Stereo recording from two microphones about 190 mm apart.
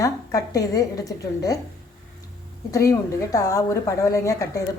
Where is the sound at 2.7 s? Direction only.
15° left (ahead or behind).